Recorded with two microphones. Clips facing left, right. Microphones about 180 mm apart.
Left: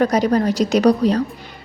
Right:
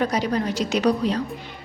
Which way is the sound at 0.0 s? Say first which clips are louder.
Left 7 dB; 45° left (ahead or behind).